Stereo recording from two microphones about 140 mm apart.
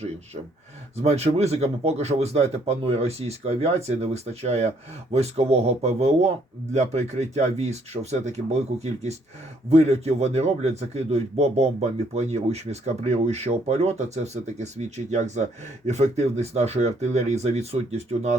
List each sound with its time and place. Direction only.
1.0 s a man's voice: 50° right (ahead or behind)
9.6 s a man's voice: 50° right (ahead or behind)